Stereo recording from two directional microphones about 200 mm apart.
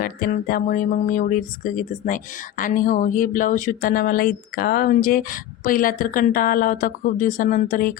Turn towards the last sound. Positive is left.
turn(degrees=45)  # may be behind; listen again after turning